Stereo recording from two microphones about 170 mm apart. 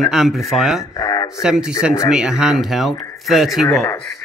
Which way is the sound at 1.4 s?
5° right (ahead or behind).